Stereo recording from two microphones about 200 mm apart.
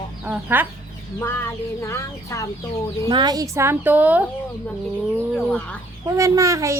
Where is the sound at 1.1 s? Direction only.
10° left (ahead or behind).